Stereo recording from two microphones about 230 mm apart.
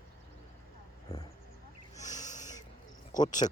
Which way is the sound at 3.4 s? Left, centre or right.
Left.